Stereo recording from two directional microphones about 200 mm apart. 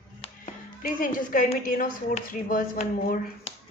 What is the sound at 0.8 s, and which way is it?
A woman's voice, 45° left (ahead or behind).